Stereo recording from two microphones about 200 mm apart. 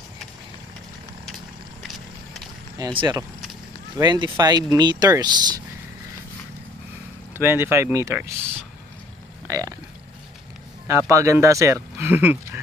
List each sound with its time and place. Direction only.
1.8 s vehicle: centre (ahead or behind)
2.8 s speech: 20° right (ahead or behind)
7.3 s speech: 10° right (ahead or behind)
9.5 s speech: 15° right (ahead or behind)
10.9 s speech: 15° right (ahead or behind)